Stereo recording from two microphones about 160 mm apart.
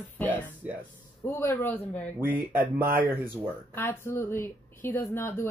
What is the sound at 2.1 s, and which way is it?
Speech, 10° right (ahead or behind).